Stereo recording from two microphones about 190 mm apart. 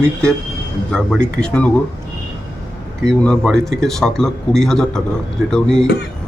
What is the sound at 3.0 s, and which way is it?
A man's voice, centre (ahead or behind).